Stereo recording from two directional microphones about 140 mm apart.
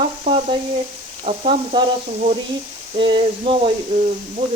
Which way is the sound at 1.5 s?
35° right (ahead or behind).